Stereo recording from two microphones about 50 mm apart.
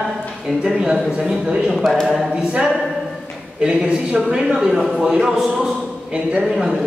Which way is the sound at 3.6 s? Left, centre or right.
Right.